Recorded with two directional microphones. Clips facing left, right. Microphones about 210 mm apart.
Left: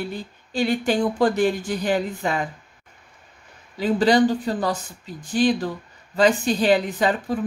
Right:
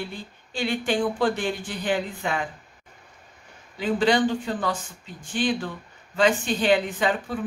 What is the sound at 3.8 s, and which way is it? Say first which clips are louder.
Speech: left 4 dB; 40° left (ahead or behind).